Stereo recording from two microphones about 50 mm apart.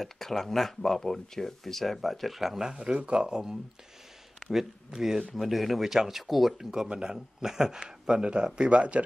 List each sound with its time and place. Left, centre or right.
0.0 s speech: centre; by 9.0 s right